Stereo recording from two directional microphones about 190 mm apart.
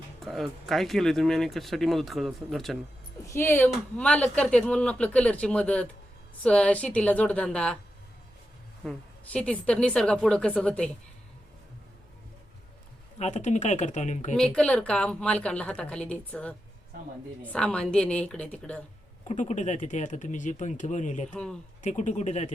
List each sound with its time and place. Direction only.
0.2 s speech: centre (ahead or behind)
3.2 s speech: 15° left (ahead or behind)
8.8 s speech: 5° left (ahead or behind)
13.1 s speech: 35° left (ahead or behind)
14.3 s speech: 5° left (ahead or behind)
19.3 s speech: 40° left (ahead or behind)